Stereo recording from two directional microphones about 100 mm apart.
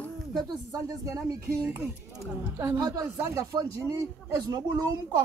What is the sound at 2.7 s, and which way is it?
A woman's voice, 40° right (ahead or behind).